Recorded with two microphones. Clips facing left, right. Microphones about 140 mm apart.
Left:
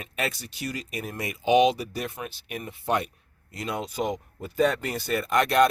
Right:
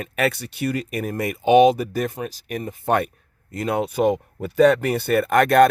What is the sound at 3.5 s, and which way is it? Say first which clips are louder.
Speech: right 9 dB; 55° right (ahead or behind).